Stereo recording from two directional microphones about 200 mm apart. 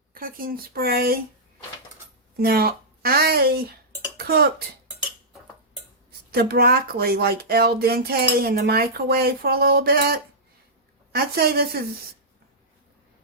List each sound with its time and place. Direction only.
0.1 s speech: 45° right (ahead or behind)
2.3 s a woman's voice: 50° right (ahead or behind)
6.3 s speech: 50° right (ahead or behind)